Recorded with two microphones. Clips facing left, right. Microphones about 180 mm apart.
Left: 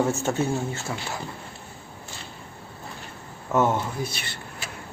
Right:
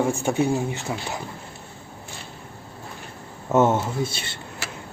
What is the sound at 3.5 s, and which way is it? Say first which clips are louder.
Speech: right 4 dB; 25° right (ahead or behind).